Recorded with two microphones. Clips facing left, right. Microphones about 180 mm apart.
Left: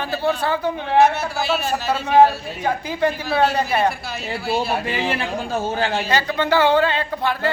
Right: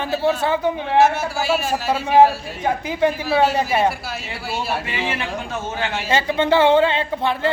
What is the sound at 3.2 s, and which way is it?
Speech, 5° right (ahead or behind).